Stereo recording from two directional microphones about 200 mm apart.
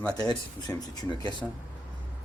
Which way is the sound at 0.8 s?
20° left (ahead or behind).